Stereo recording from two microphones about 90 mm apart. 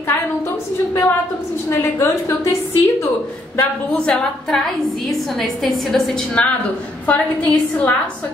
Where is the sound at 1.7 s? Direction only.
30° left (ahead or behind).